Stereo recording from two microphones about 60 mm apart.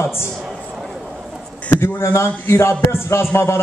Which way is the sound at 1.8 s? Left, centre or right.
Left.